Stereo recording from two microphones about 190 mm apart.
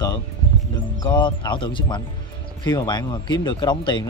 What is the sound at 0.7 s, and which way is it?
A man's voice, 25° left (ahead or behind).